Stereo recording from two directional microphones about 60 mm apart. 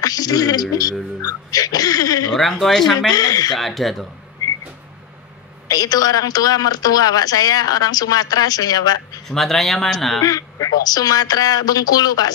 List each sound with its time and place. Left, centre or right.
0.0 s speech: left
2.6 s speech: centre
3.1 s speech: left
3.5 s speech: centre
5.7 s speech: left
9.3 s speech: centre
10.2 s speech: left